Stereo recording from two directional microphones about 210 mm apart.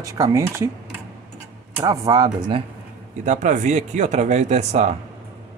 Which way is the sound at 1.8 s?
15° right (ahead or behind).